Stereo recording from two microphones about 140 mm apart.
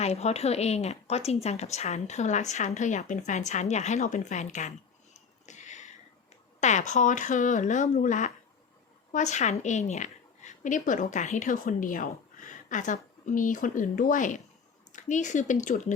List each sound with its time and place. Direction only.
0.0 s a woman's voice: 50° left (ahead or behind)
5.1 s cat: 60° left (ahead or behind)
6.6 s speech: 60° left (ahead or behind)